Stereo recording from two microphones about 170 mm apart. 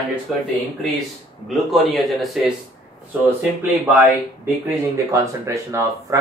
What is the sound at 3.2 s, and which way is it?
Speech, 10° right (ahead or behind).